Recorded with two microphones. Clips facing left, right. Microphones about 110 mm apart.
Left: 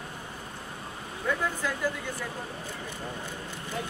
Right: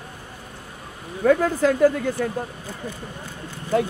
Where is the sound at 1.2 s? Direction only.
70° right (ahead or behind).